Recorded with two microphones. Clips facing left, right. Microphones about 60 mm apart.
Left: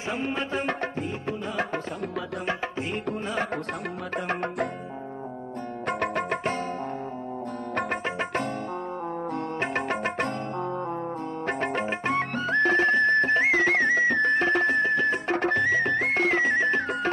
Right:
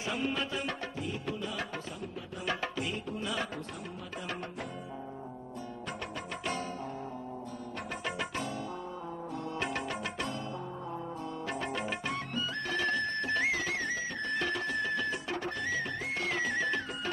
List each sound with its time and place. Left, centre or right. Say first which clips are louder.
0.1 s music: left 5 dB; left
4.3 s music: left 12 dB; left
5.9 s music: left 15 dB; left
9.6 s music: left 7 dB; left
11.4 s music: left 8 dB; left
12.2 s music: left 12 dB; left
14.3 s music: left 10 dB; left
15.2 s music: left 11 dB; left